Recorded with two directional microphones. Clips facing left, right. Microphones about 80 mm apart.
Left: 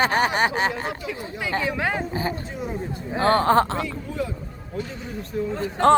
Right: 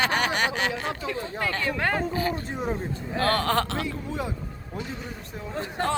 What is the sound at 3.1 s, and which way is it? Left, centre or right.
Speech, left.